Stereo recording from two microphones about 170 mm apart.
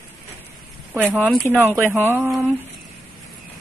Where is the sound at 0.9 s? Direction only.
10° right (ahead or behind).